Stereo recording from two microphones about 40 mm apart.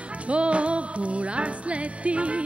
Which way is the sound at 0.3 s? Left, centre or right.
Right.